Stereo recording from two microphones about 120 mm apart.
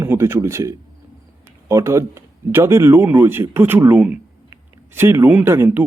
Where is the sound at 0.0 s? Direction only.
20° right (ahead or behind).